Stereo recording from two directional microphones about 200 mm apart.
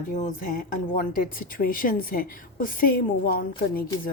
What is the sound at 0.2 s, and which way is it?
A woman's voice, 40° left (ahead or behind).